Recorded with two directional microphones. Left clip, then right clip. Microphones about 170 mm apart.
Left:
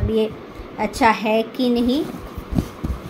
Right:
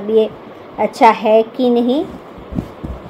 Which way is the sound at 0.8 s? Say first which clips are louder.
Right 7 dB; 25° right (ahead or behind).